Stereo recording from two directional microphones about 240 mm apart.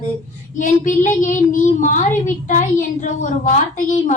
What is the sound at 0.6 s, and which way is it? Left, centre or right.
Speech, left.